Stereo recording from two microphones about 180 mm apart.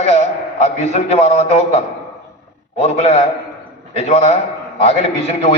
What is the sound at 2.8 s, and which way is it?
A man's voice, 35° left (ahead or behind).